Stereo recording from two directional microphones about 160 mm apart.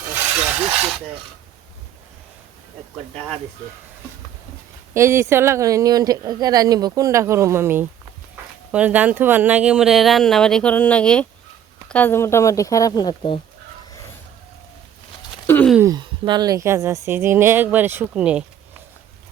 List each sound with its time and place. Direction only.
0.1 s wood: 10° right (ahead or behind)
4.9 s speech: 15° right (ahead or behind); by 13.4 s 30° left (ahead or behind)
15.4 s a sound: 10° left (ahead or behind)
15.8 s speech: 25° right (ahead or behind); by 18.4 s 5° right (ahead or behind)